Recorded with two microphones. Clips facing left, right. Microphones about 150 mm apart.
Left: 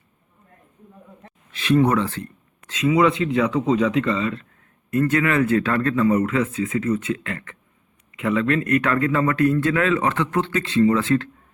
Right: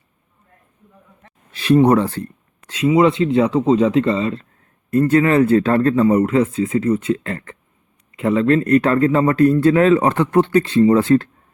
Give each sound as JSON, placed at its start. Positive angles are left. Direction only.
{"t": 1.5, "sound": "speech", "side_deg": -35}